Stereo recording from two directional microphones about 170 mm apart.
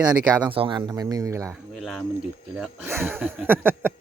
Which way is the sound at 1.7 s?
Centre (ahead or behind).